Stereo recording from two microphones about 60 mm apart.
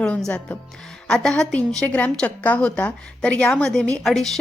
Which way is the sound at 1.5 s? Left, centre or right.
Left.